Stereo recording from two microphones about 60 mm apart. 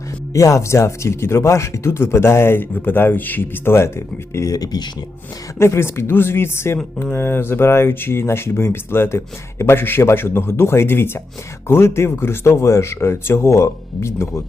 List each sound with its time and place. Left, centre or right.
0.3 s speech: left
4.4 s speech: left
5.5 s speech: left